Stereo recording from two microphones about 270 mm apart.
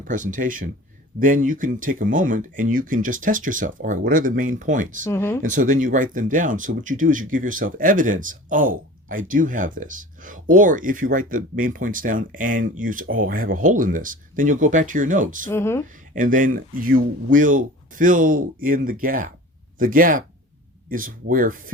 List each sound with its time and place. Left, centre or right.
0.0 s speech: right
5.0 s speech: centre
5.4 s speech: right
15.4 s speech: centre
16.1 s speech: right